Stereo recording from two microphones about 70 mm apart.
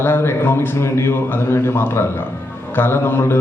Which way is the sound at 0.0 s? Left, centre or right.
Left.